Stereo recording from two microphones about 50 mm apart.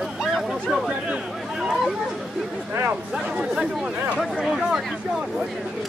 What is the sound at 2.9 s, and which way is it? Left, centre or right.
Speech, right.